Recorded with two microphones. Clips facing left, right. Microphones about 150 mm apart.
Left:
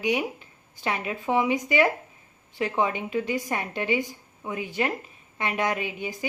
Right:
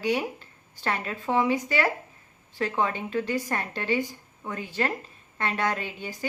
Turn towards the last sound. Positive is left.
turn(degrees=15)  # may be behind; listen again after turning